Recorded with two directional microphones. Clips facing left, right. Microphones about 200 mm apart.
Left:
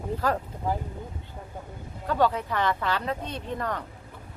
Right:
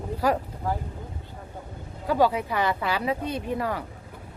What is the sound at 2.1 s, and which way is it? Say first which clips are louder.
Speech: right 2 dB; 10° right (ahead or behind).